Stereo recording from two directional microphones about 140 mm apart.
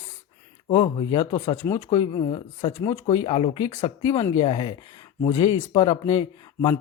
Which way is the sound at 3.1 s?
40° left (ahead or behind).